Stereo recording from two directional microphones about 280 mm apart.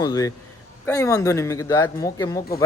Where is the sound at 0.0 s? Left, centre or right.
Centre.